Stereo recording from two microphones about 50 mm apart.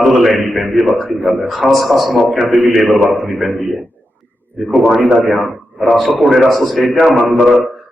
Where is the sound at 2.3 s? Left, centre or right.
Centre.